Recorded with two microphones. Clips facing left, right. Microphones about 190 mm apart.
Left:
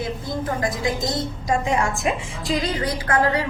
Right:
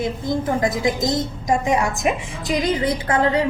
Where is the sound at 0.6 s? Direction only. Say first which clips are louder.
Right 4 dB; 20° right (ahead or behind).